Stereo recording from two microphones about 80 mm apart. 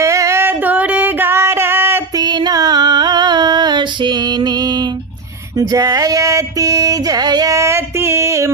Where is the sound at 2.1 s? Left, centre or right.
Right.